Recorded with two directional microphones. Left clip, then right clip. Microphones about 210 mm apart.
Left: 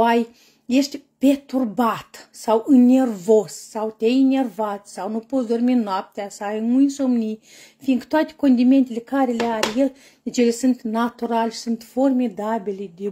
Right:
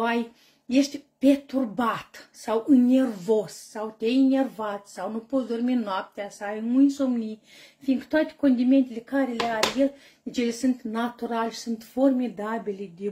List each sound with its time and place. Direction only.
0.7 s a woman's voice: 40° left (ahead or behind)